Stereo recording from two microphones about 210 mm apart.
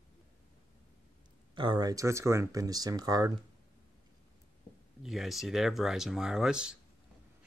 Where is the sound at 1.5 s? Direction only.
20° right (ahead or behind).